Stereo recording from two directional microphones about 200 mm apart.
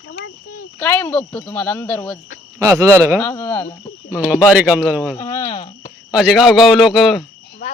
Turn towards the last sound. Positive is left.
turn(degrees=0)  # may be behind; listen again after turning